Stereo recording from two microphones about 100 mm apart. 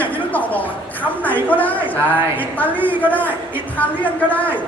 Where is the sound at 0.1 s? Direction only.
15° left (ahead or behind).